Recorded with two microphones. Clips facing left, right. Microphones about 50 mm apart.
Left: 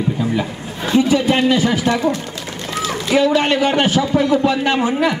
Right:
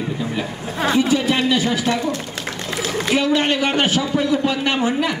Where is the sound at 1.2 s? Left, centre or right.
Left.